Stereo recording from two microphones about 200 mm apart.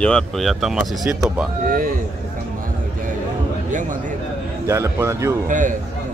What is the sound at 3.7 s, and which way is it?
Speech, 40° right (ahead or behind).